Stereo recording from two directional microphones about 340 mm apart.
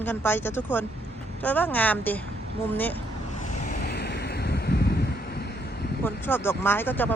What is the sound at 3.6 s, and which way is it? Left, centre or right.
Waves, left.